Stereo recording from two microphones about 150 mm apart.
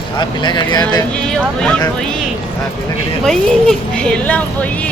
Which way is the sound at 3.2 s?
5° left (ahead or behind).